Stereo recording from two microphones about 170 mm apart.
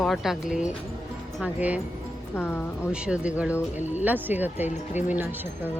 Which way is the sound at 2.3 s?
15° left (ahead or behind).